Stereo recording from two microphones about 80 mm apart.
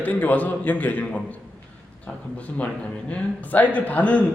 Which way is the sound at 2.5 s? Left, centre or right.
Centre.